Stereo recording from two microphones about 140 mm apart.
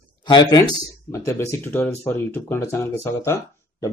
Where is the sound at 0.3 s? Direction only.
30° left (ahead or behind).